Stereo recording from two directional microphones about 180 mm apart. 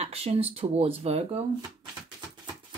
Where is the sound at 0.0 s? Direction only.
35° right (ahead or behind).